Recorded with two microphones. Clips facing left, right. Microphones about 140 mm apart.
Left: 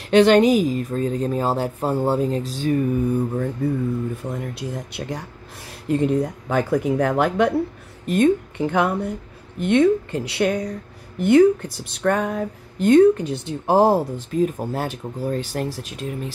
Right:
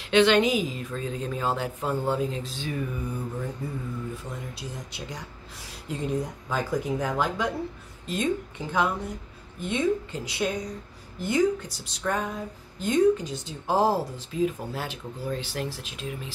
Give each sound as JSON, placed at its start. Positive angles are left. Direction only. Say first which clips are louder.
{"t": 0.1, "sound": "a woman's voice", "louder": "left 7 dB", "side_deg": 45}